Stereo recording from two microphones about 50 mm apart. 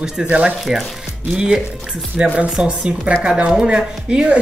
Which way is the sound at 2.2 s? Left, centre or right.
Centre.